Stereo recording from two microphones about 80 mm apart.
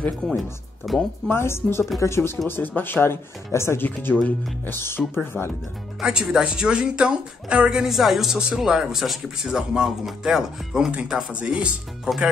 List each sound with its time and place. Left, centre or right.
0.4 s speech: centre
1.3 s speech: left
2.4 s speech: left
5.9 s speech: centre